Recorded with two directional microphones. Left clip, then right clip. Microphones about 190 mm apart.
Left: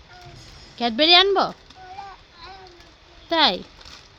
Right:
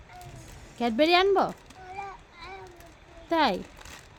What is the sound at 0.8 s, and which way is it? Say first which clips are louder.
Speech: left 6 dB; 5° right (ahead or behind).